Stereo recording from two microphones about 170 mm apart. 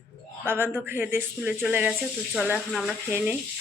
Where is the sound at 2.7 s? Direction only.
Centre (ahead or behind).